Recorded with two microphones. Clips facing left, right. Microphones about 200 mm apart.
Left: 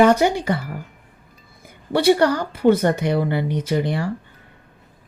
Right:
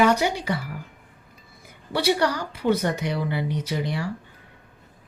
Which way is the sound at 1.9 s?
50° left (ahead or behind).